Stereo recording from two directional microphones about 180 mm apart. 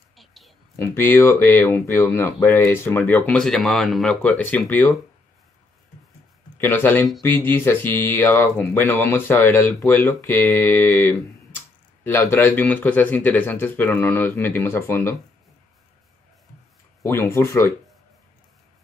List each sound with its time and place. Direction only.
0.1 s a sound: centre (ahead or behind)
0.7 s speech: 10° left (ahead or behind)
6.6 s speech: 10° left (ahead or behind)
17.0 s speech: 15° left (ahead or behind)